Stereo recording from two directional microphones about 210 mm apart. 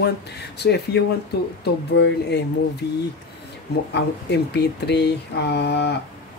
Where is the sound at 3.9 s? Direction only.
55° left (ahead or behind).